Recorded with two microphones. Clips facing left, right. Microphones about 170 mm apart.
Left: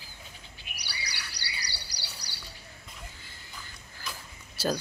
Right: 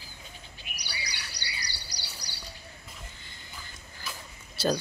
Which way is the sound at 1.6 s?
30° left (ahead or behind).